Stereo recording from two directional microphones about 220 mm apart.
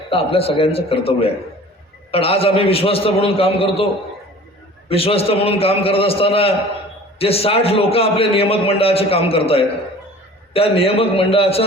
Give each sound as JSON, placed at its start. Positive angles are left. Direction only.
{"t": 0.1, "sound": "a man's voice", "side_deg": 25}
{"t": 4.9, "sound": "a man's voice", "side_deg": 25}